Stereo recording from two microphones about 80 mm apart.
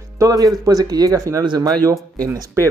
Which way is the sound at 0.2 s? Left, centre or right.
Right.